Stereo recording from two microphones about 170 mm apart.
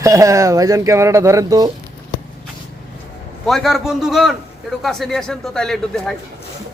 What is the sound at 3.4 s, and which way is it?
A man's voice, centre (ahead or behind).